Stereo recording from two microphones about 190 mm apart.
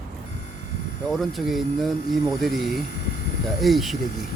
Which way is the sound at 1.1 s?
Centre (ahead or behind).